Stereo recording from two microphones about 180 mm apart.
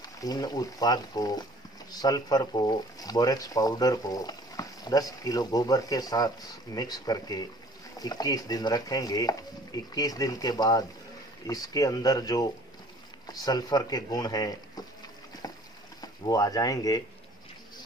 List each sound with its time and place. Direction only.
0.0 s speech: 20° left (ahead or behind)
15.4 s boat: 20° left (ahead or behind)
16.0 s speech: 20° left (ahead or behind)